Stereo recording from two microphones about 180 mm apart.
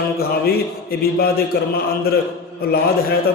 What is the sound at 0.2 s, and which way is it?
A man's voice, 60° left (ahead or behind).